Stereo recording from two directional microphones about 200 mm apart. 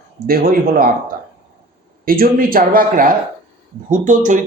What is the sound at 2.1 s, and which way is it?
A man's voice, 45° right (ahead or behind).